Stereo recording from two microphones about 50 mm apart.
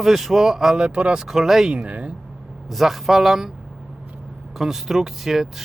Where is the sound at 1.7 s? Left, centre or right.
Right.